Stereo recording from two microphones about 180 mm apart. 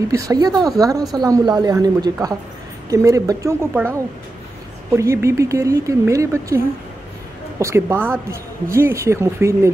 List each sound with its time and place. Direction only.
0.1 s a woman's voice: 20° right (ahead or behind)